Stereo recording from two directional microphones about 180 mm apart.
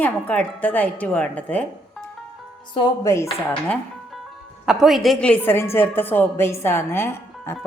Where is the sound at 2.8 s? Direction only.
15° left (ahead or behind).